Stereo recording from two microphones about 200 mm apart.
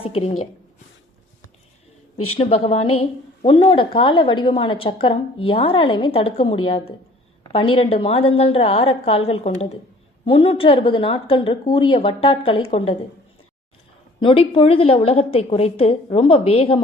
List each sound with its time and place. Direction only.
0.0 s a woman's voice: 30° left (ahead or behind)
2.3 s speech: 30° left (ahead or behind)
14.2 s speech: 25° left (ahead or behind)